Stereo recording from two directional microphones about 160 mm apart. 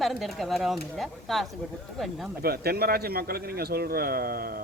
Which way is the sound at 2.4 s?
75° right (ahead or behind).